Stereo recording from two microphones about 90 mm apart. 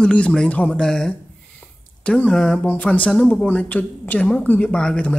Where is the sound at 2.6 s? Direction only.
15° left (ahead or behind).